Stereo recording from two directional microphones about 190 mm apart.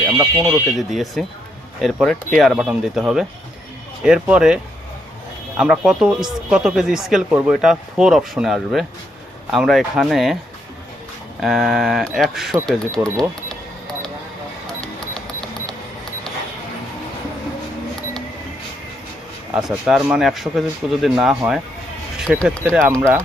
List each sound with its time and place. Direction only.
0.3 s speech: centre (ahead or behind)
11.3 s speech: centre (ahead or behind)
12.6 s a sound: centre (ahead or behind)
14.8 s music: 5° left (ahead or behind)
19.5 s speech: centre (ahead or behind)